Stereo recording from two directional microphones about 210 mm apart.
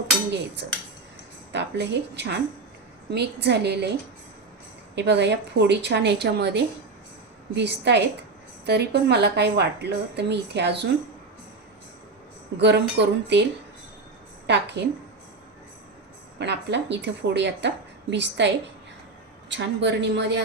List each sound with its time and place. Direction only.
0.6 s a woman's voice: 50° right (ahead or behind)
4.9 s a woman's voice: 55° right (ahead or behind)
12.5 s a woman's voice: 55° right (ahead or behind)
16.4 s speech: 55° right (ahead or behind)